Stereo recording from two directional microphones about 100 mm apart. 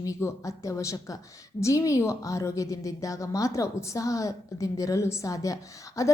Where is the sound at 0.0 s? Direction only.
30° left (ahead or behind).